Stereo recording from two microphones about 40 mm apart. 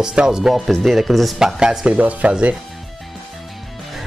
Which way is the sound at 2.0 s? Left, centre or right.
Right.